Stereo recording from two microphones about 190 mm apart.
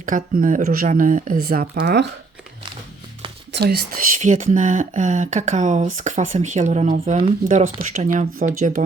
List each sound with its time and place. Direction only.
0.0 s speech: 45° right (ahead or behind)
3.5 s speech: 55° right (ahead or behind)
4.2 s speech: 40° right (ahead or behind)